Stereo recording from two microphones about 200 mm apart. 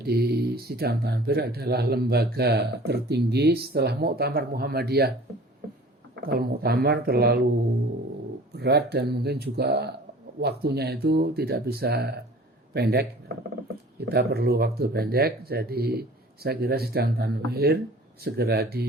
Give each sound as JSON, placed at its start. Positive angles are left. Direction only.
{"t": 0.0, "sound": "speech", "side_deg": -50}
{"t": 6.2, "sound": "speech", "side_deg": -50}
{"t": 8.5, "sound": "a man's voice", "side_deg": -55}